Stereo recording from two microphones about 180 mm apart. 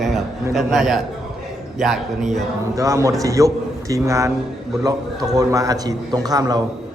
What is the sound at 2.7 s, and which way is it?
A man's voice, 15° right (ahead or behind).